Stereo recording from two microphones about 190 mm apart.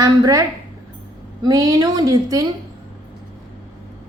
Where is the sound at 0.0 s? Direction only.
20° right (ahead or behind).